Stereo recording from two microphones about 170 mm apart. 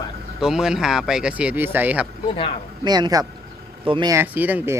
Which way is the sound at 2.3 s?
30° left (ahead or behind).